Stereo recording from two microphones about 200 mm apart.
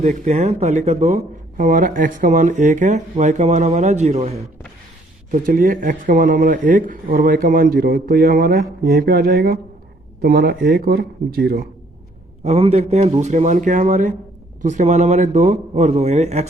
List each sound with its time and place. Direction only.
0.0 s speech: 35° right (ahead or behind)
5.3 s speech: 45° right (ahead or behind)
12.5 s speech: 30° right (ahead or behind)